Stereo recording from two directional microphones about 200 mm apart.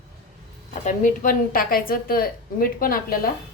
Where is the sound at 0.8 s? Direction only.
40° left (ahead or behind).